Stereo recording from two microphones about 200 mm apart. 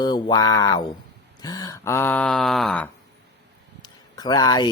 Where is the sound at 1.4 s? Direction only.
20° left (ahead or behind).